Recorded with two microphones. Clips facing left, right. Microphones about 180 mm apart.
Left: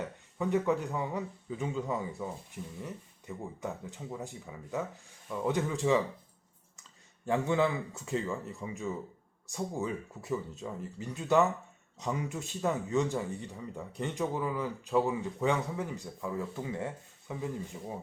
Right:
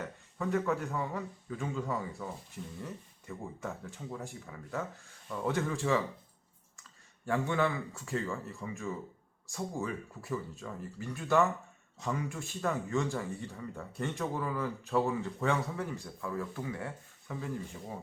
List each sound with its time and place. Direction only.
0.0 s speech: 15° left (ahead or behind)
7.3 s speech: 20° left (ahead or behind)